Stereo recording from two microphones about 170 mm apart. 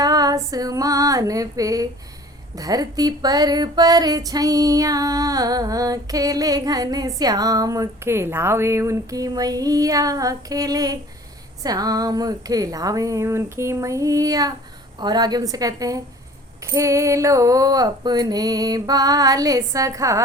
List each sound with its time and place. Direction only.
0.0 s female singing: 20° right (ahead or behind)
2.6 s music: 20° right (ahead or behind)